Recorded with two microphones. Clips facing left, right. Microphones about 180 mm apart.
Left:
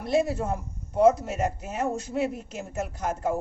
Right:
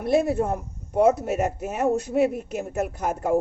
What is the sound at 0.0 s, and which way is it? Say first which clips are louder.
Speech: right 4 dB; 60° right (ahead or behind).